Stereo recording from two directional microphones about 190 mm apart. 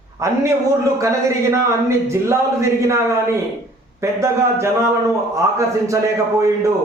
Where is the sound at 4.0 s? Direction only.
15° right (ahead or behind).